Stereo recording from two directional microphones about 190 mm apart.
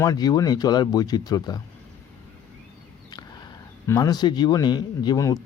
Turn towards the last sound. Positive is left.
turn(degrees=20)  # may be behind; listen again after turning